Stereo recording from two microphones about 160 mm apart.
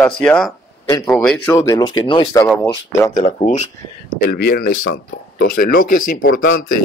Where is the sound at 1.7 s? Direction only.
25° left (ahead or behind).